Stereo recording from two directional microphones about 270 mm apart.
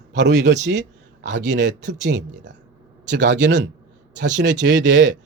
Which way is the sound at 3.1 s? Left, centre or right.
Right.